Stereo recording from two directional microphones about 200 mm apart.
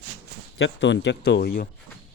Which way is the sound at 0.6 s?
65° left (ahead or behind).